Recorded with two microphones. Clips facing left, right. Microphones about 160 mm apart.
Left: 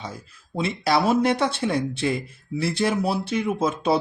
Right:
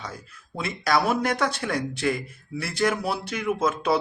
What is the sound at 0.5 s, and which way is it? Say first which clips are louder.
Speech: left 2 dB; 25° left (ahead or behind).